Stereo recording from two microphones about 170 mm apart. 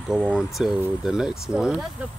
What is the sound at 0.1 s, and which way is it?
Speech, 5° right (ahead or behind).